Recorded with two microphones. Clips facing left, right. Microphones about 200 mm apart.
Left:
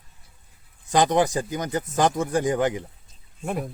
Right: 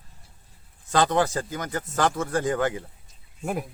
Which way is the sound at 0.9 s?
15° left (ahead or behind).